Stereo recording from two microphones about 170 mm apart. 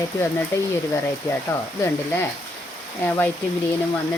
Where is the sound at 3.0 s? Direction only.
10° left (ahead or behind).